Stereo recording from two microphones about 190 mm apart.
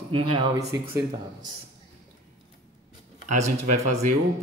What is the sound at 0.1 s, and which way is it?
Speech, 25° right (ahead or behind).